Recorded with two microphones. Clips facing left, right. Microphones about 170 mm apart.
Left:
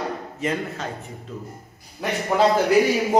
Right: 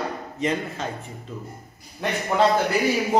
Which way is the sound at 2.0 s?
5° left (ahead or behind).